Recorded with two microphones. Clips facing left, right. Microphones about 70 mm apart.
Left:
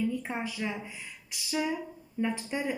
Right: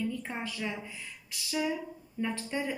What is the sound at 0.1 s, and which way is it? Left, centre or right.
Speech, centre.